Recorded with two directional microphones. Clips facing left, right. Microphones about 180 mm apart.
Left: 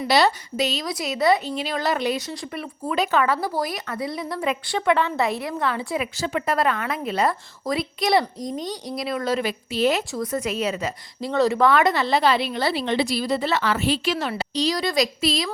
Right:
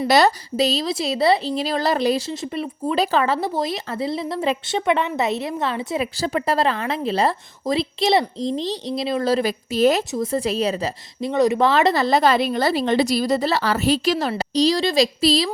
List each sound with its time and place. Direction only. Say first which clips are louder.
0.0 s speech: right 3 dB; 40° right (ahead or behind)
10.1 s speech: right 4 dB; 25° right (ahead or behind)
11.3 s speech: right 1 dB; 20° right (ahead or behind); by 15.4 s 35° right (ahead or behind)